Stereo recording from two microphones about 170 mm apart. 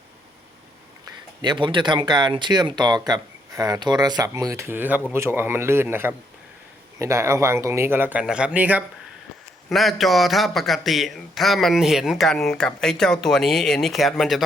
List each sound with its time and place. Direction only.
1.4 s speech: 30° right (ahead or behind); by 14.4 s centre (ahead or behind)